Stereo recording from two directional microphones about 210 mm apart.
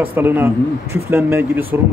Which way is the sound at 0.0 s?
10° right (ahead or behind).